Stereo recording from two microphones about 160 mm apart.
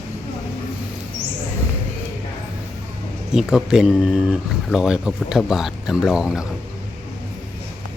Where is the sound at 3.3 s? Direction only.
5° right (ahead or behind).